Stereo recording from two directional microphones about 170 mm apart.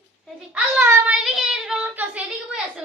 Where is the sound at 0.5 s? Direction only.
10° right (ahead or behind).